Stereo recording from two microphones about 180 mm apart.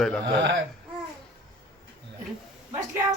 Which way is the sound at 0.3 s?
65° right (ahead or behind).